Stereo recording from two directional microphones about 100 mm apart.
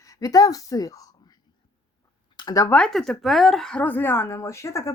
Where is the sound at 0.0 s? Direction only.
35° left (ahead or behind).